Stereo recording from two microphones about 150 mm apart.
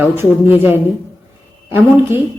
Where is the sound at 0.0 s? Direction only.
15° right (ahead or behind).